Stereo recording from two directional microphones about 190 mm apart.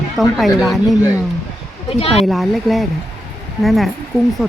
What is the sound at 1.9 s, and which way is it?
Speech, 30° left (ahead or behind).